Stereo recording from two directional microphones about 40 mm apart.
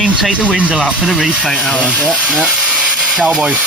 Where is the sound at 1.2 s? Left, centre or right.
Centre.